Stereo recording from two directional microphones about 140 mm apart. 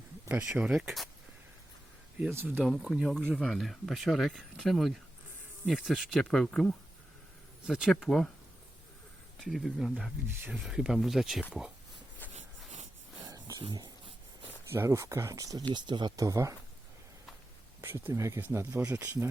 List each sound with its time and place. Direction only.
0.3 s speech: 10° right (ahead or behind)
2.6 s speech: centre (ahead or behind)
9.4 s speech: centre (ahead or behind)
10.2 s speech: 15° right (ahead or behind)
10.5 s speech: 5° right (ahead or behind)
12.3 s a sound: 55° right (ahead or behind)
13.1 s a sound: 25° right (ahead or behind)
13.7 s speech: 35° right (ahead or behind)
14.7 s speech: 20° right (ahead or behind)
17.7 s speech: 15° right (ahead or behind)